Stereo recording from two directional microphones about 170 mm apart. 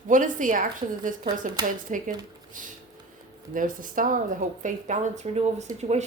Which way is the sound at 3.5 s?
50° right (ahead or behind).